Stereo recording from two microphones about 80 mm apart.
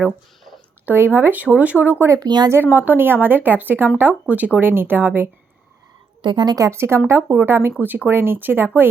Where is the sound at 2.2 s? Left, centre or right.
Right.